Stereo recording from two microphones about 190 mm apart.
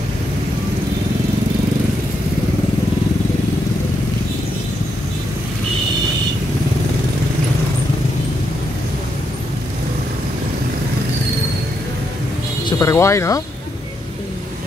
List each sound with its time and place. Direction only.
12.6 s speech: 15° left (ahead or behind)